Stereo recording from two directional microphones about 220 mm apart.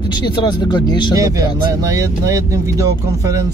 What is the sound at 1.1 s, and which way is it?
Speech, 15° right (ahead or behind).